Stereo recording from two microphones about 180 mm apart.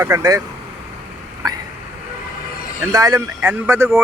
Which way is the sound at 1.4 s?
20° right (ahead or behind).